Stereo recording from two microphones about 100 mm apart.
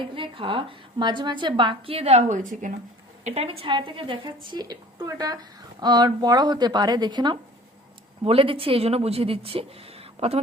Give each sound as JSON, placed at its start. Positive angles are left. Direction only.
{"t": 0.0, "sound": "a woman's voice", "side_deg": -60}
{"t": 2.0, "sound": "a woman's voice", "side_deg": -90}
{"t": 3.2, "sound": "a woman's voice", "side_deg": -85}
{"t": 3.8, "sound": "a woman's voice", "side_deg": -60}
{"t": 8.2, "sound": "speech", "side_deg": -65}